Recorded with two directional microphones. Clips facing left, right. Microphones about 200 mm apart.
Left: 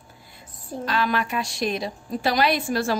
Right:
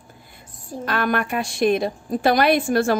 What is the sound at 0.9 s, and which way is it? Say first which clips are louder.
A woman's voice: right 2 dB; 55° right (ahead or behind).